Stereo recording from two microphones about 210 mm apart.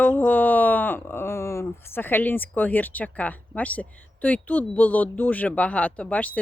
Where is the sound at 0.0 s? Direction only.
10° left (ahead or behind).